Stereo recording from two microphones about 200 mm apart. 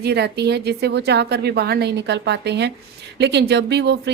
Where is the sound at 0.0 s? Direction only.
55° right (ahead or behind).